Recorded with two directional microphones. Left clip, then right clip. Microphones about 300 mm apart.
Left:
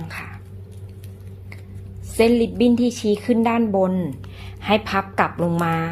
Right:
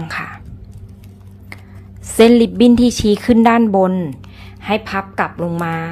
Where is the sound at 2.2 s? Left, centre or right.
Centre.